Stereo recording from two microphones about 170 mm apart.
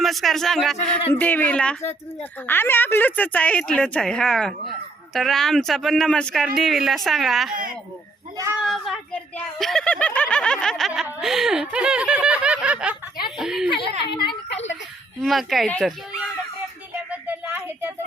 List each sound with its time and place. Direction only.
0.0 s speech: centre (ahead or behind)
8.6 s a sound: centre (ahead or behind)
9.6 s snicker: centre (ahead or behind)
13.4 s speech: centre (ahead or behind)
14.1 s a woman's voice: 25° left (ahead or behind)
15.2 s speech: centre (ahead or behind)
17.1 s a sound: 10° right (ahead or behind)